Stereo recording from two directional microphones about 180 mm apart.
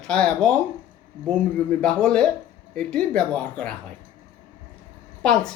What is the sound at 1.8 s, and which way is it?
Speech, 5° left (ahead or behind).